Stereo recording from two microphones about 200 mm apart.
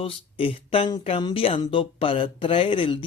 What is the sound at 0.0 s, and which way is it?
Speech, 25° left (ahead or behind).